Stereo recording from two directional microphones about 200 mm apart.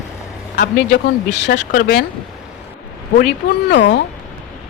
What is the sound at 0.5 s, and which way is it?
Speech, 50° left (ahead or behind).